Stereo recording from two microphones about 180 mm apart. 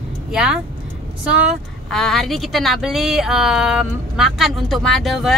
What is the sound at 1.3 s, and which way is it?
A woman's voice, 5° right (ahead or behind).